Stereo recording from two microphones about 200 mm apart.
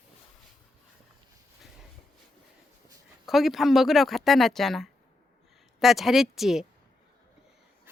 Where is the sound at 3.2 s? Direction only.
Centre (ahead or behind).